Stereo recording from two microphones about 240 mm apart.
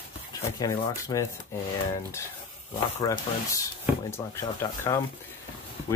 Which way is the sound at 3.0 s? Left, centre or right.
Centre.